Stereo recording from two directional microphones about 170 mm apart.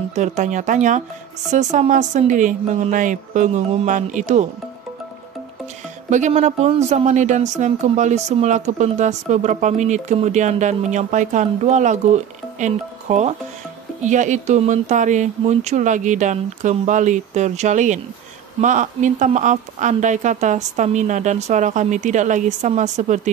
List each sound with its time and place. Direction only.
0.1 s speech: 45° right (ahead or behind)
6.0 s speech: 45° right (ahead or behind)